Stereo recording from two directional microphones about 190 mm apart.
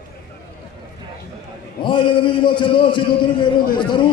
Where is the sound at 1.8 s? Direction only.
25° left (ahead or behind).